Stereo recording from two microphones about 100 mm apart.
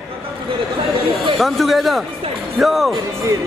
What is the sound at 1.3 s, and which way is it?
Speech, centre (ahead or behind).